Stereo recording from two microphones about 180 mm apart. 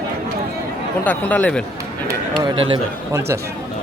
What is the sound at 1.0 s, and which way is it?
Speech, 10° left (ahead or behind).